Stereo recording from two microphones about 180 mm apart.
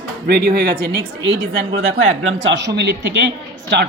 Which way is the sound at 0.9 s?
75° right (ahead or behind).